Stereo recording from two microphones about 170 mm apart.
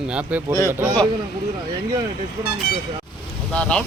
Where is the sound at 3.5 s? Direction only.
5° left (ahead or behind).